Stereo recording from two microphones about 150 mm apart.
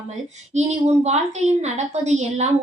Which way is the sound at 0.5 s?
50° right (ahead or behind).